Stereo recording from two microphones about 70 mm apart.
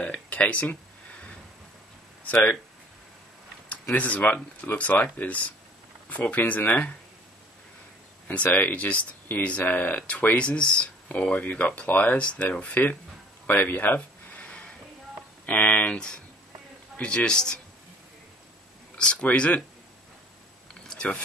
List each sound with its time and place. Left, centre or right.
0.0 s speech: left
3.6 s speech: centre
8.3 s speech: left
13.5 s a sound: left
15.4 s a man's voice: left
18.9 s a man's voice: centre
20.8 s a sound: centre